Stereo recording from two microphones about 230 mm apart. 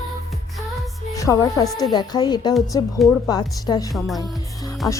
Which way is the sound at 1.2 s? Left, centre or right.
Centre.